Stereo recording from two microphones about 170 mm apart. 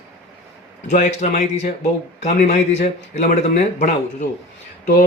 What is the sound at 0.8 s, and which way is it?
Speech, 45° left (ahead or behind).